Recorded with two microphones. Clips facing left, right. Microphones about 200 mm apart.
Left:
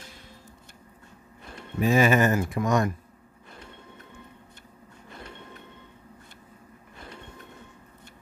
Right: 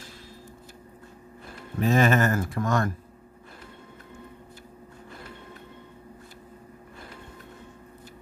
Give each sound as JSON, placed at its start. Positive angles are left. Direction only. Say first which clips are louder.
{"t": 1.8, "sound": "speech", "louder": "left 1 dB", "side_deg": 10}